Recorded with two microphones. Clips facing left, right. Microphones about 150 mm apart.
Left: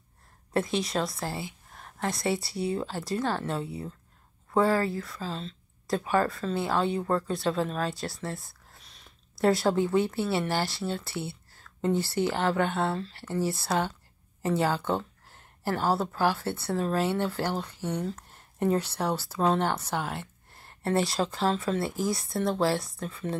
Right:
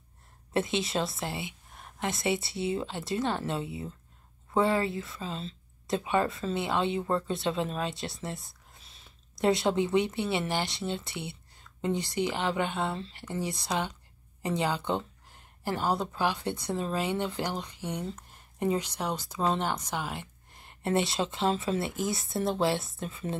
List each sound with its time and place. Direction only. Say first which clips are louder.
0.5 s speech: left 1 dB; 25° right (ahead or behind)
21.8 s speech: left 2 dB; centre (ahead or behind)
22.3 s speech: left 1 dB; 25° right (ahead or behind)